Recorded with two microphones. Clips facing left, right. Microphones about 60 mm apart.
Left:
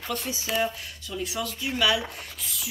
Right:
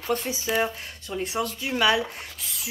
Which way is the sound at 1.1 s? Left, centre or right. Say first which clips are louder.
Right 3 dB; right.